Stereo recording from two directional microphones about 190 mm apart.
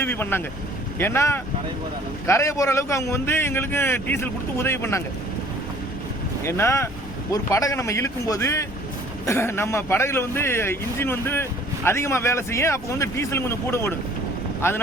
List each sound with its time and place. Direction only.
0.0 s speech: 10° left (ahead or behind)
6.4 s speech: 15° left (ahead or behind)